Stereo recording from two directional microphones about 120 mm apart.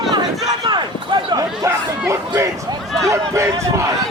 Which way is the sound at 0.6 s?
40° right (ahead or behind).